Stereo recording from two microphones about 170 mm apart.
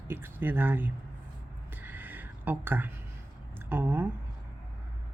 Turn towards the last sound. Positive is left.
turn(degrees=-10)  # may be behind; listen again after turning